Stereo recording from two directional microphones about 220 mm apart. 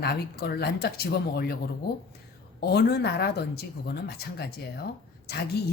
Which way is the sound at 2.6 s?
45° left (ahead or behind).